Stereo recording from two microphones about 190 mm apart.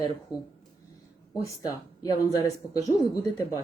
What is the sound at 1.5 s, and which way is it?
Speech, 20° left (ahead or behind).